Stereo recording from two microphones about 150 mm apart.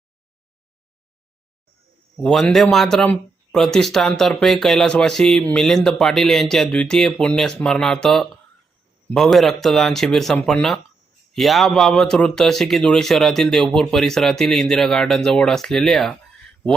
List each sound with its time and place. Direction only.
2.1 s speech: 5° left (ahead or behind)